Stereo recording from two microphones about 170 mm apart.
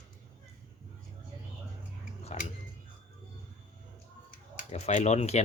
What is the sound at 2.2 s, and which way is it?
Tick-tock, 40° left (ahead or behind).